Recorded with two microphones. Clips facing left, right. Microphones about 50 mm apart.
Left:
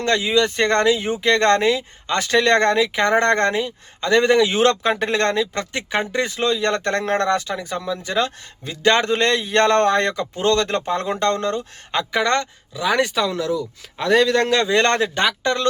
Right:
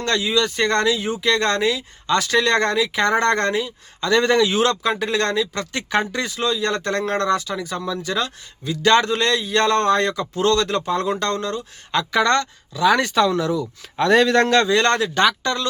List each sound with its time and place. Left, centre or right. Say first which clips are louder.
0.0 s speech: left 2 dB; left
4.6 s speech: left 2 dB; left
5.7 s speech: right 3 dB; centre
6.1 s speech: left 2 dB; left
11.9 s speech: right 2 dB; left
13.2 s a man's voice: right 2 dB; centre
14.7 s speech: even; left
15.1 s speech: right 1 dB; left